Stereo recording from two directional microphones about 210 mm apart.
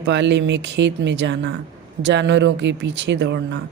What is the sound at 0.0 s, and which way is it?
Speech, 55° right (ahead or behind).